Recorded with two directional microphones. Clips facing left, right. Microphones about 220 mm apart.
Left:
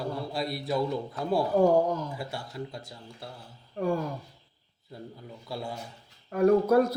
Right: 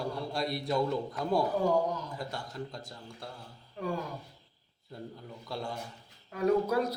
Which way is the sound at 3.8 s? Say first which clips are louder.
Left 7 dB; 50° left (ahead or behind).